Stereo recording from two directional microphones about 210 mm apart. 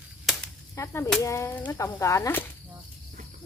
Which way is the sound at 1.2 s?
15° left (ahead or behind).